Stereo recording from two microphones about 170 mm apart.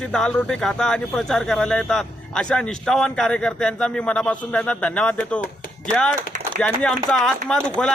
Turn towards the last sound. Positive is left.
turn(degrees=5)  # may be behind; listen again after turning